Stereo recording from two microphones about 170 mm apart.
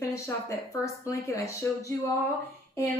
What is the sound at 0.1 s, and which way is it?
A woman's voice, 15° left (ahead or behind).